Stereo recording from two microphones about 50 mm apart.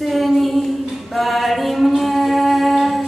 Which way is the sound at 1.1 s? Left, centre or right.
Centre.